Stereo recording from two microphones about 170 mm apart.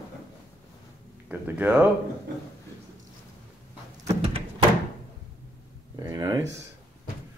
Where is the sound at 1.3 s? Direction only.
10° right (ahead or behind).